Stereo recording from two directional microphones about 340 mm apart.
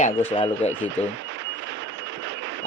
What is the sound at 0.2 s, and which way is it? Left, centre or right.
Speech, centre.